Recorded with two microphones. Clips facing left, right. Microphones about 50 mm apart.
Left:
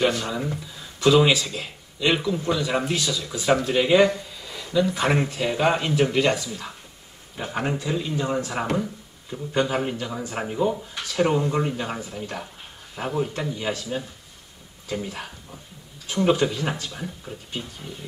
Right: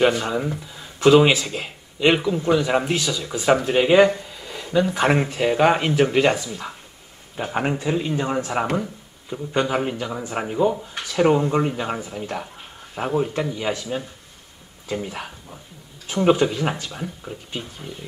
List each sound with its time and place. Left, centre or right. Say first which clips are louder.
0.0 s speech: right 4 dB; right
1.0 s speech: right 3 dB; right
2.1 s speech: right 3 dB; right
2.5 s a man's voice: right 6 dB; right
15.0 s speech: right 2 dB; right
16.9 s speech: right 3 dB; centre